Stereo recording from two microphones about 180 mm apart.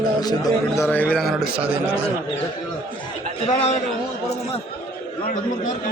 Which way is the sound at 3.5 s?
30° left (ahead or behind).